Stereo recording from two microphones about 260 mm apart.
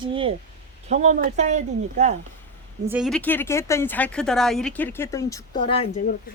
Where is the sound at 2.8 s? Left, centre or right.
Centre; by 5.9 s left.